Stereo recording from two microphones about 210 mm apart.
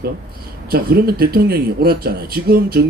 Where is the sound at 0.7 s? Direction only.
45° right (ahead or behind).